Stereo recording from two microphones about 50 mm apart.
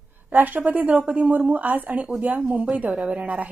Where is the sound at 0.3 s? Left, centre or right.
Right.